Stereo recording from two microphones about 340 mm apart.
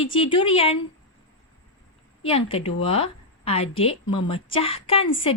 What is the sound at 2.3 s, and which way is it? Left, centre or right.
A woman's voice, centre.